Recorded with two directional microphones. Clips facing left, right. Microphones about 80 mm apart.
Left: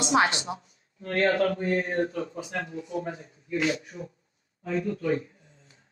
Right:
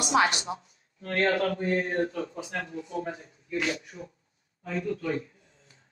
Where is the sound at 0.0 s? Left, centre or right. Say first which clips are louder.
Left 1 dB; left.